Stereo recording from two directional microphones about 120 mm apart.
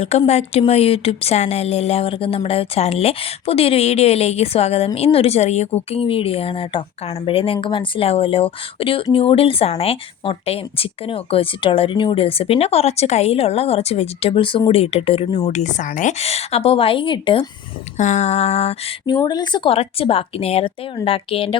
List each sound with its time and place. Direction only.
0.3 s a woman's voice: 60° left (ahead or behind); by 14.6 s 45° left (ahead or behind)
14.7 s speech: 55° left (ahead or behind)
15.4 s speech: 80° left; by 17.4 s 45° left (ahead or behind)
17.9 s speech: 85° left; by 18.9 s 60° left (ahead or behind)
19.0 s a woman's voice: 35° left (ahead or behind); by 21.6 s 50° left (ahead or behind)